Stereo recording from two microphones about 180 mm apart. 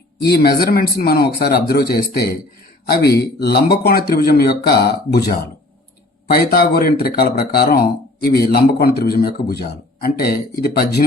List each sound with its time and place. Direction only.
0.3 s a man's voice: 60° left (ahead or behind)